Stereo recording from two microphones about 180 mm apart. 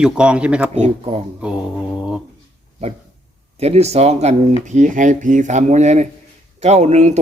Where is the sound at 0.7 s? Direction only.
35° right (ahead or behind).